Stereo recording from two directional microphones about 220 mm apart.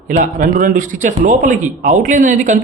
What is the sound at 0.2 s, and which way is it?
Speech, 40° right (ahead or behind).